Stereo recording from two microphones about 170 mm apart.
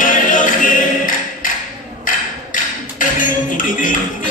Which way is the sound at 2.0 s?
50° left (ahead or behind).